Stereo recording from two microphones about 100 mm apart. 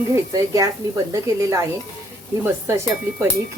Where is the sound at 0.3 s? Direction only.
35° right (ahead or behind).